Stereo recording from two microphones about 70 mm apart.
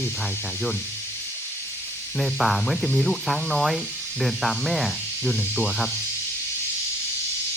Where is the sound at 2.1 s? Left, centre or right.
Centre.